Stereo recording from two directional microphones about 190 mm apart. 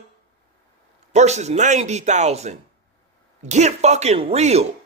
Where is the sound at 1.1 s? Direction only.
35° right (ahead or behind).